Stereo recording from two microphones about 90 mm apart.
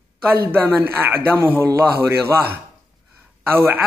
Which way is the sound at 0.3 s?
25° right (ahead or behind).